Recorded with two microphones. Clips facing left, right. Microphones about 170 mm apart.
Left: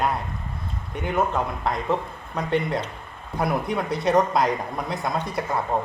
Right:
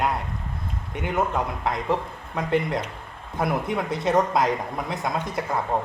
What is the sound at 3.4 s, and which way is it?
Speech, 20° right (ahead or behind).